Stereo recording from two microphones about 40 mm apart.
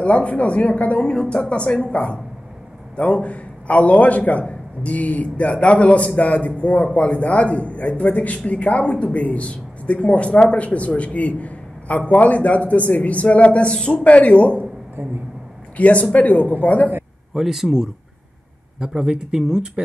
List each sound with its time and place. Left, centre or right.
0.0 s a man's voice: left
15.8 s a man's voice: left
17.3 s speech: centre